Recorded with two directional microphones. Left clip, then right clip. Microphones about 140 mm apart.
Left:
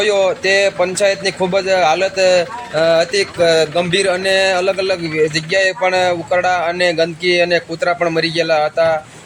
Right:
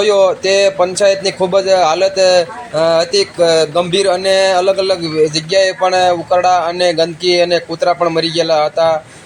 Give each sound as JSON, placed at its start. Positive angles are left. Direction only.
{"t": 0.0, "sound": "a man's voice", "side_deg": -15}